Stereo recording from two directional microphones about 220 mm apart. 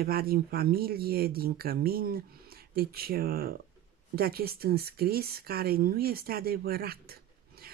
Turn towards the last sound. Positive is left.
turn(degrees=-45)  # may be behind; listen again after turning